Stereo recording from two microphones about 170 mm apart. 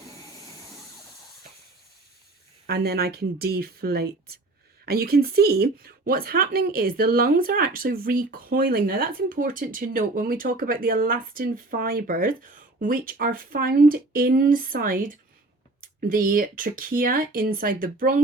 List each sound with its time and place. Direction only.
2.6 s a woman's voice: 65° right (ahead or behind)